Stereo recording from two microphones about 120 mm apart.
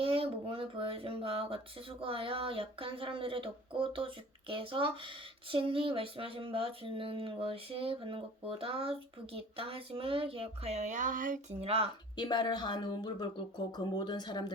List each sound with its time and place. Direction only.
0.0 s speech: 50° right (ahead or behind); by 11.3 s 90° right
11.6 s speech: 55° right (ahead or behind)
12.1 s speech: 40° left (ahead or behind)